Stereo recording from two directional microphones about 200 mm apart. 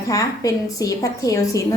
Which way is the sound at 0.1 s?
15° left (ahead or behind).